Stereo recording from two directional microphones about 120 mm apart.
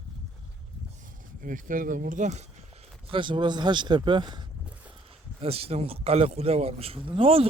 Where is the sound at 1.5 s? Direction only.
90° right.